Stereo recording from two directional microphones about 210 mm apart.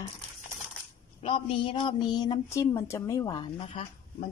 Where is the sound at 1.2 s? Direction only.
25° left (ahead or behind).